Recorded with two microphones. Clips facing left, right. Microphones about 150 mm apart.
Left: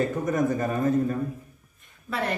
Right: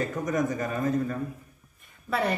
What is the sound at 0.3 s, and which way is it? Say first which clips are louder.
Speech: left 1 dB; 30° left (ahead or behind).